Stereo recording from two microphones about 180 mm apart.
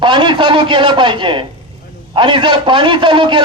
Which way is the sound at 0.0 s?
25° right (ahead or behind).